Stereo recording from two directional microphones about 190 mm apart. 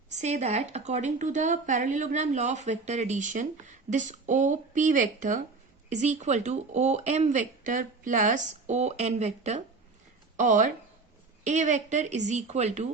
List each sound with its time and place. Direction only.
0.1 s speech: 35° right (ahead or behind)